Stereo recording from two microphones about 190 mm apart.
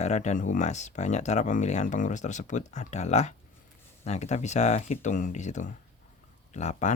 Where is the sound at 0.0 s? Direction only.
35° left (ahead or behind).